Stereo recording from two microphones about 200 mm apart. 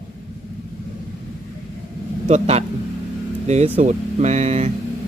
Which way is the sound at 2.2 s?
35° right (ahead or behind).